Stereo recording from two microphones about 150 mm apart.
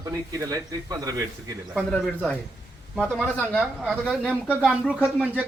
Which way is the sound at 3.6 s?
Centre (ahead or behind).